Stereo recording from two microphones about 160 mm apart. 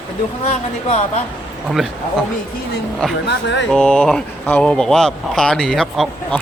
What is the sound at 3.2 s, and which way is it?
Speech, 90° left.